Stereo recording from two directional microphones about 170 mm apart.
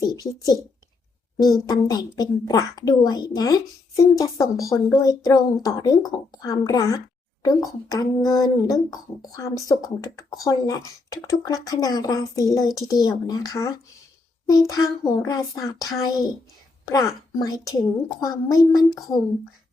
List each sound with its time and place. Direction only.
0.0 s speech: 20° left (ahead or behind)
1.6 s a child's voice: 25° left (ahead or behind)